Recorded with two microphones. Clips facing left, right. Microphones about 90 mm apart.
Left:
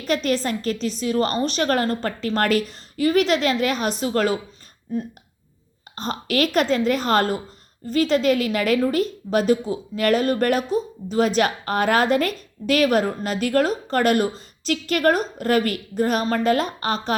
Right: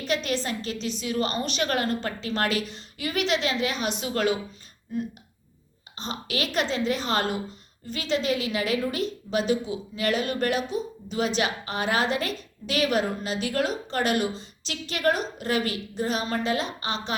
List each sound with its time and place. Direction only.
0.0 s a woman's voice: 45° left (ahead or behind)
6.0 s a woman's voice: 50° left (ahead or behind)